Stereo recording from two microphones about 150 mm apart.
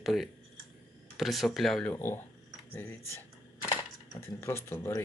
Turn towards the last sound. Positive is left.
turn(degrees=15)  # may be behind; listen again after turning